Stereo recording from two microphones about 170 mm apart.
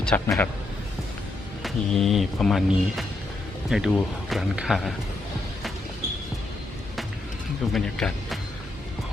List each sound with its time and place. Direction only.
0.0 s a man's voice: 5° left (ahead or behind)
1.6 s speech: centre (ahead or behind)
7.7 s speech: 5° left (ahead or behind)